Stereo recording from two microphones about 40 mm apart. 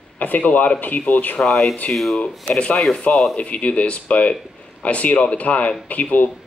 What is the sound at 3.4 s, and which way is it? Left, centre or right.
Speech, left.